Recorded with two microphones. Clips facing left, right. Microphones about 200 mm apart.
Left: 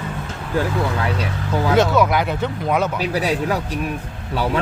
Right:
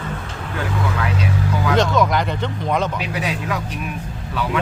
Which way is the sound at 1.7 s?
5° left (ahead or behind).